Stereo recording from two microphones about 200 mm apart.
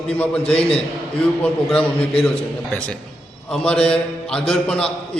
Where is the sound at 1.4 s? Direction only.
5° left (ahead or behind).